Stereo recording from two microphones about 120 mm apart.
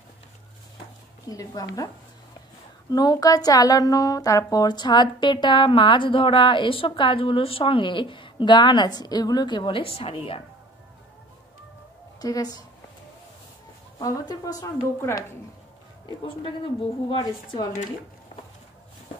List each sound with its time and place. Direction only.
1.3 s a woman's voice: 30° left (ahead or behind)
2.9 s a woman's voice: 30° left (ahead or behind); by 10.4 s 50° left (ahead or behind)
12.2 s a woman's voice: 35° left (ahead or behind)
13.9 s a woman's voice: 35° left (ahead or behind)
17.1 s a woman's voice: 35° left (ahead or behind)